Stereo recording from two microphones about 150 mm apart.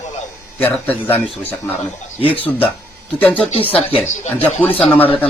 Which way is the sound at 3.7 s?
40° left (ahead or behind).